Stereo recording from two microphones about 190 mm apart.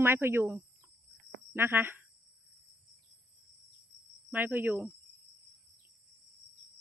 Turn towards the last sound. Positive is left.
turn(degrees=-10)  # may be behind; listen again after turning